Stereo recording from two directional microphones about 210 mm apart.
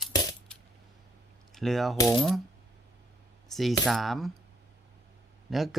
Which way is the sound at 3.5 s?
Centre (ahead or behind).